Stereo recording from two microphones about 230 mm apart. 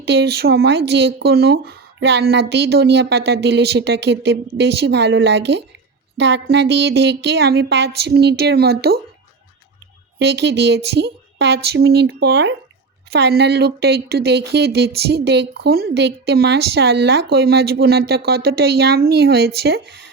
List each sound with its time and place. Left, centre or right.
0.0 s speech: right
10.2 s speech: right